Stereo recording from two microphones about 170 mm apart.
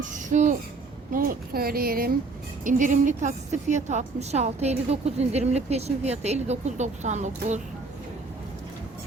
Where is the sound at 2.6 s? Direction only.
50° right (ahead or behind).